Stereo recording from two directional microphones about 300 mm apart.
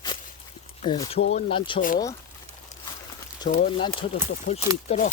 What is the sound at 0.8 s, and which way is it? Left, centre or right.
Speech, centre.